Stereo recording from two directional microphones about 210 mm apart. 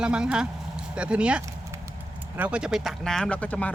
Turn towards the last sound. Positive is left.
turn(degrees=5)  # may be behind; listen again after turning